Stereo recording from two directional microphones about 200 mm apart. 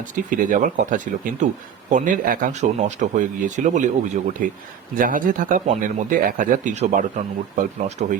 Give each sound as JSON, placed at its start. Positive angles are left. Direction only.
{"t": 0.2, "sound": "speech", "side_deg": -40}